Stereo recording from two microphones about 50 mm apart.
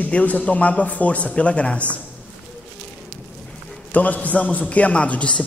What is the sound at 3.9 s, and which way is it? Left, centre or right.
A man's voice, left.